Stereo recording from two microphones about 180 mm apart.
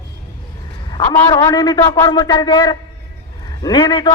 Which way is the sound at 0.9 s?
30° left (ahead or behind).